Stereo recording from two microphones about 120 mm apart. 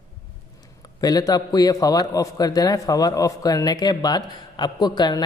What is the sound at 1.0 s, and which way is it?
A man's voice, 30° left (ahead or behind).